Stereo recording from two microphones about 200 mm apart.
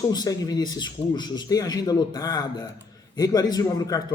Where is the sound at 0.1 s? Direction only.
20° left (ahead or behind).